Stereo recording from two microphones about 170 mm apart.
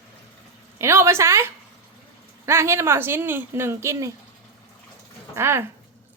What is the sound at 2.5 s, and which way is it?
A woman's voice, 15° right (ahead or behind).